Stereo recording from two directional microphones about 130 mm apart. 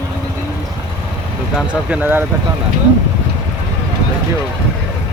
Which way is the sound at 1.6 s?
10° right (ahead or behind).